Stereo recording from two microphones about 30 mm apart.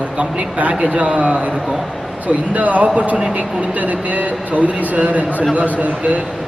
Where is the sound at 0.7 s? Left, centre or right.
Right.